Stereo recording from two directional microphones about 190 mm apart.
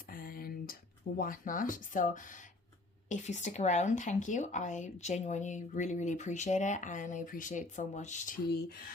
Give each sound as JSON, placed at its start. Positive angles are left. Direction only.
{"t": 0.1, "sound": "a sound", "side_deg": 50}
{"t": 3.1, "sound": "speech", "side_deg": 40}
{"t": 8.4, "sound": "speech", "side_deg": 55}